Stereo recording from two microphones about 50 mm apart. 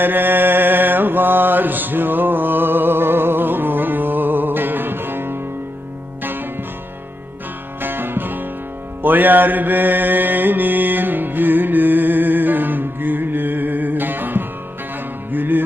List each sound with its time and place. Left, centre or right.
0.0 s mantra: right
6.2 s music: right
7.8 s music: right